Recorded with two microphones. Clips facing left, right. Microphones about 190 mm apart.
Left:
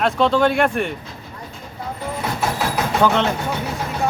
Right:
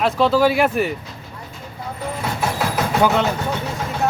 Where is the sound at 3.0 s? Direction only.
5° right (ahead or behind).